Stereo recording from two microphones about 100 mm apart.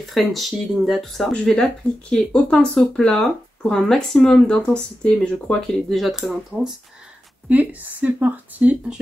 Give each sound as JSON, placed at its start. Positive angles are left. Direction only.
{"t": 0.1, "sound": "speech", "side_deg": 0}
{"t": 7.4, "sound": "speech", "side_deg": -15}